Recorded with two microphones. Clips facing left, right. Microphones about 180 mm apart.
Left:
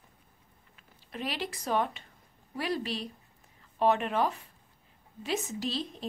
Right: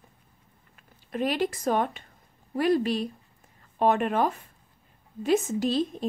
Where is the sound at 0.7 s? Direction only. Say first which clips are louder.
Right 9 dB; 50° right (ahead or behind).